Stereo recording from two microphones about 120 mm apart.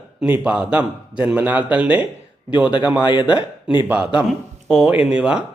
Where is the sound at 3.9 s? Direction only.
10° right (ahead or behind).